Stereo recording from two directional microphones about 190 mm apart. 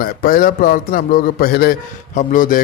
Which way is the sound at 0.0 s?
50° left (ahead or behind).